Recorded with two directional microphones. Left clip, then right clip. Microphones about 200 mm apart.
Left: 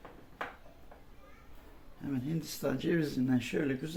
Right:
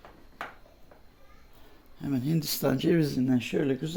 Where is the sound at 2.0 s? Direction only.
55° right (ahead or behind).